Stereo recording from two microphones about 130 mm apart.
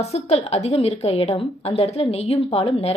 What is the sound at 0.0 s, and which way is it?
A woman's voice, 55° left (ahead or behind).